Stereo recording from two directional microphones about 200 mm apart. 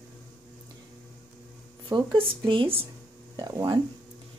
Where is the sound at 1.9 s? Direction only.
20° right (ahead or behind).